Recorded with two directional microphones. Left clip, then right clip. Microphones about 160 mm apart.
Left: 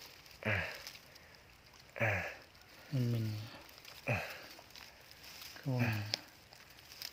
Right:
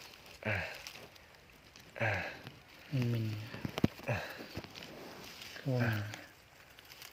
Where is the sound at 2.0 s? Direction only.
10° left (ahead or behind).